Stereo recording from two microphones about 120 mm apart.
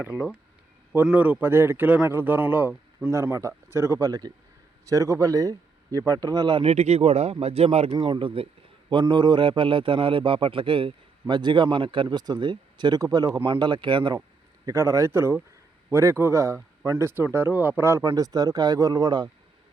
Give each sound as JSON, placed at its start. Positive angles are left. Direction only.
{"t": 1.1, "sound": "a man's voice", "side_deg": -15}
{"t": 6.6, "sound": "speech", "side_deg": -65}
{"t": 7.9, "sound": "a man's voice", "side_deg": -40}
{"t": 14.6, "sound": "a man's voice", "side_deg": -25}